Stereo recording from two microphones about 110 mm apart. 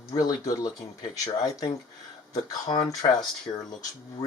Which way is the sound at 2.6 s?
45° left (ahead or behind).